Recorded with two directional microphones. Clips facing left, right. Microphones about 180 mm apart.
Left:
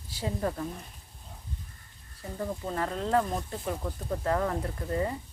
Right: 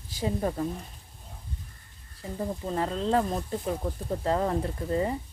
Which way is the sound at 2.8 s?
25° right (ahead or behind).